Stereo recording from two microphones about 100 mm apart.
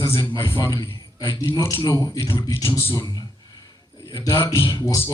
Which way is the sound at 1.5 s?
40° left (ahead or behind).